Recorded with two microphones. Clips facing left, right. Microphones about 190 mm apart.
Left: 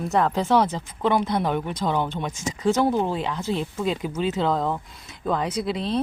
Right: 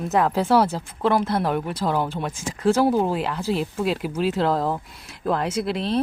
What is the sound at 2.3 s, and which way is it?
Speech, 55° right (ahead or behind).